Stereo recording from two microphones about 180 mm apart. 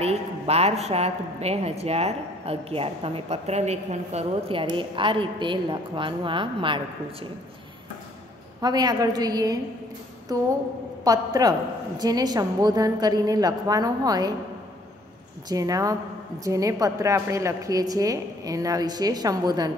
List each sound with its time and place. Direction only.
0.0 s a woman's voice: 35° right (ahead or behind)
8.5 s a woman's voice: 20° right (ahead or behind)
15.4 s a woman's voice: 20° right (ahead or behind)